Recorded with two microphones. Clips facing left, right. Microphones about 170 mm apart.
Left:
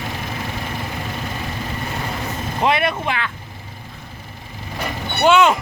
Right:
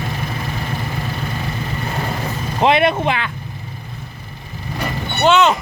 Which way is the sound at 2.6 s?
25° right (ahead or behind).